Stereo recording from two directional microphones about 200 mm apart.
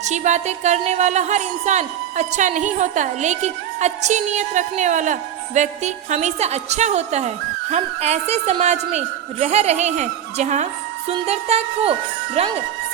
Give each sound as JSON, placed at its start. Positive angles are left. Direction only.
{"t": 0.0, "sound": "speech", "side_deg": -35}